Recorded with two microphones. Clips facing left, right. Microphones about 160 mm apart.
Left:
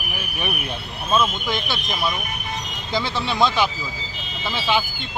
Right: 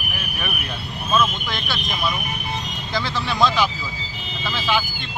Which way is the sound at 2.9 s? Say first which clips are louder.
Left 1 dB; 20° left (ahead or behind).